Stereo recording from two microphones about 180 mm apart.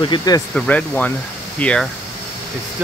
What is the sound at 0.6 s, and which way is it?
Speech, 5° left (ahead or behind).